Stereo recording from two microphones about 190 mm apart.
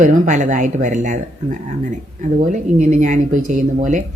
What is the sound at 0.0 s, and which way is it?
Speech, 40° right (ahead or behind).